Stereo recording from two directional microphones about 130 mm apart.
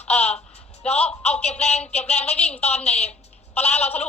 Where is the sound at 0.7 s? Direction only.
55° left (ahead or behind).